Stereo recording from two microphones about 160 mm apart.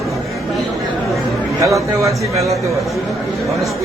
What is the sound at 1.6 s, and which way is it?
Speech, 20° right (ahead or behind).